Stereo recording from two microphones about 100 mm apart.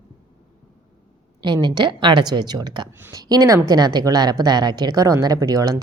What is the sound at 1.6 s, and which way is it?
Speech, 50° right (ahead or behind).